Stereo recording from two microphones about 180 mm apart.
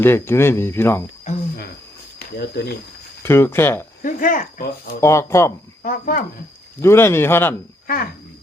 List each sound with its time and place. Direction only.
0.0 s speech: 15° left (ahead or behind)
1.3 s cricket: 40° left (ahead or behind)
2.1 s speech: 60° left (ahead or behind)
3.2 s speech: 15° left (ahead or behind)
4.0 s speech: 50° left (ahead or behind)
4.9 s speech: 15° left (ahead or behind)
5.8 s speech: 50° left (ahead or behind)
6.8 s speech: 15° left (ahead or behind)